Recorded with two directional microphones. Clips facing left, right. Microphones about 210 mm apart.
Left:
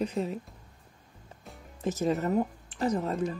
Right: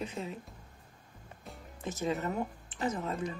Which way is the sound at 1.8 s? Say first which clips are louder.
Left 6 dB; 40° left (ahead or behind).